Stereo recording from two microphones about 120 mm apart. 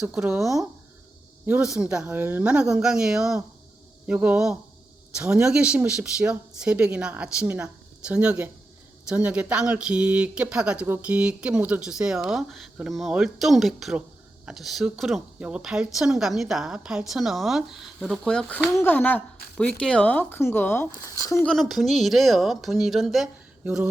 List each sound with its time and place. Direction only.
0.0 s speech: 10° right (ahead or behind)
1.5 s a woman's voice: 10° right (ahead or behind); by 18.6 s 10° left (ahead or behind)
18.7 s speech: 20° left (ahead or behind)
21.2 s speech: 25° left (ahead or behind)
21.4 s a woman's voice: 5° left (ahead or behind)
23.6 s speech: 10° right (ahead or behind)